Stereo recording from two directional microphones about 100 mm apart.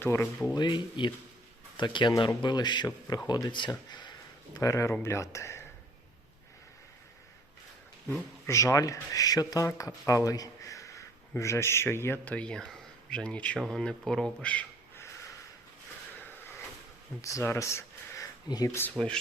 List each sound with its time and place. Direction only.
0.0 s speech: 25° left (ahead or behind)
0.5 s speech: 50° left (ahead or behind)
4.5 s speech: 30° left (ahead or behind)
8.4 s speech: 30° left (ahead or behind); by 14.7 s 15° left (ahead or behind)
16.4 s a sound: 20° left (ahead or behind)
17.2 s speech: 30° left (ahead or behind)
18.4 s speech: 40° left (ahead or behind)
18.7 s speech: 20° left (ahead or behind)